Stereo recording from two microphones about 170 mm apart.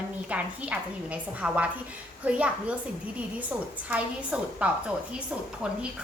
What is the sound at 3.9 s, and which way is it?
A woman's voice, 5° right (ahead or behind).